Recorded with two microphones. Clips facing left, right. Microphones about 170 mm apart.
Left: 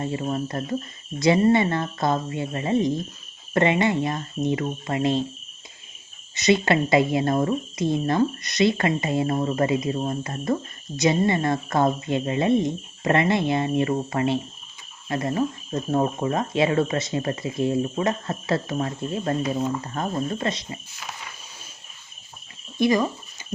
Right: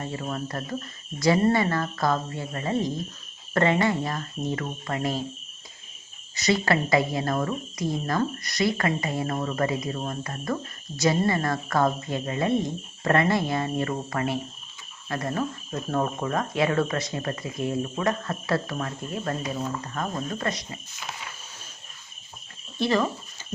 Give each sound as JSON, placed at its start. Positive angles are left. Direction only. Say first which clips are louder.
{"t": 0.0, "sound": "speech", "louder": "left 5 dB", "side_deg": 25}
{"t": 6.3, "sound": "speech", "louder": "left 4 dB", "side_deg": 20}
{"t": 22.8, "sound": "speech", "louder": "left 3 dB", "side_deg": 15}